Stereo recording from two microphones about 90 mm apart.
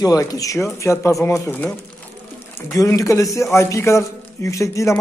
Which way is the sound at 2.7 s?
40° left (ahead or behind).